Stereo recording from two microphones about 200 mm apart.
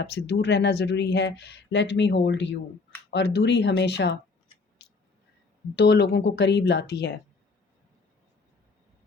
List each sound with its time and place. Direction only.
0.0 s speech: 55° left (ahead or behind)
5.7 s speech: 55° left (ahead or behind)